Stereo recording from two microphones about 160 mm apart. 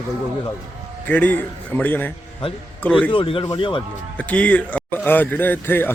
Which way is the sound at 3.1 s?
30° left (ahead or behind).